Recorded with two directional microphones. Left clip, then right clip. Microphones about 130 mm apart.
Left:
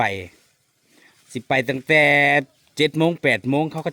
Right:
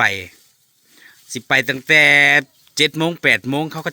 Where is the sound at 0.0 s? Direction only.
20° left (ahead or behind).